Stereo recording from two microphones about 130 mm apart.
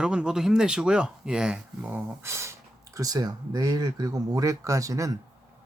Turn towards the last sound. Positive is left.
turn(degrees=-25)  # may be behind; listen again after turning